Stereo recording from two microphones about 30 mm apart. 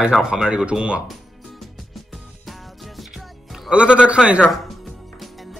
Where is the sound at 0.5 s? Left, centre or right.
Right.